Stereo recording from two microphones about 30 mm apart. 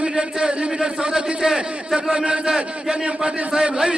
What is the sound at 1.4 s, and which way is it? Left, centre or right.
Speech, right.